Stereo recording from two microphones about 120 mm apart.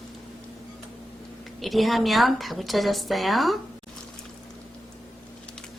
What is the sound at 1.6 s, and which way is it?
A woman's voice, centre (ahead or behind).